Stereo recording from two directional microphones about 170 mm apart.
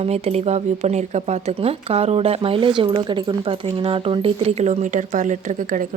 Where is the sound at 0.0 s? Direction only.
40° right (ahead or behind).